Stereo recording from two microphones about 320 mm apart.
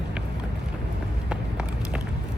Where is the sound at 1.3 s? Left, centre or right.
Centre.